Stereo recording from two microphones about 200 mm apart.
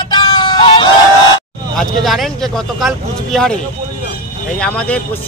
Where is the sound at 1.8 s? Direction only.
Centre (ahead or behind).